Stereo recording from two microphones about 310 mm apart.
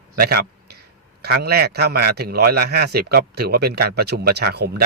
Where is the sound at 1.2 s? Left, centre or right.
Right.